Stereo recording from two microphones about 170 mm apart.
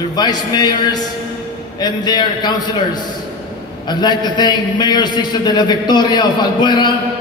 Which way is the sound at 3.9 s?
25° left (ahead or behind).